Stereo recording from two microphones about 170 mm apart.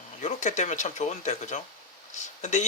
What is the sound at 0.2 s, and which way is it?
Speech, 45° left (ahead or behind).